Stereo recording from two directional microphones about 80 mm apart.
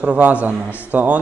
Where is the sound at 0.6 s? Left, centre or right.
Left.